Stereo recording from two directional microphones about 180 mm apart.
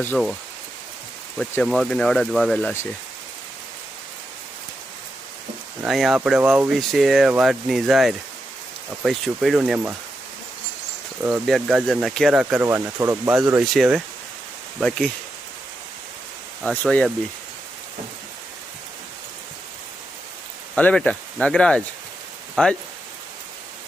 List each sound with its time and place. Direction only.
1.4 s speech: centre (ahead or behind)
5.8 s speech: centre (ahead or behind)
11.2 s speech: 5° right (ahead or behind)
12.6 s speech: 15° right (ahead or behind); by 15.1 s 5° left (ahead or behind)
16.6 s speech: 5° left (ahead or behind)
20.7 s speech: 5° left (ahead or behind)